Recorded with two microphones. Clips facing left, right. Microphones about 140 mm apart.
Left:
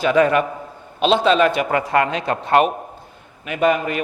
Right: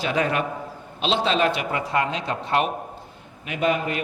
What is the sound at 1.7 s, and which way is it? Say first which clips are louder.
A man's voice: left 6 dB; 65° left (ahead or behind).